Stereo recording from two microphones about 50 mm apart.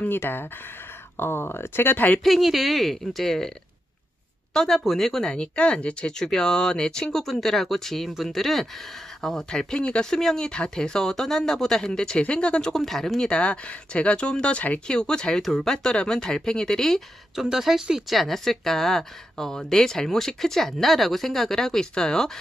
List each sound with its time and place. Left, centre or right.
0.0 s speech: left
2.2 s speech: centre
4.6 s speech: centre
5.3 s speech: left
12.7 s speech: centre
13.3 s speech: left
14.9 s speech: centre
17.4 s speech: centre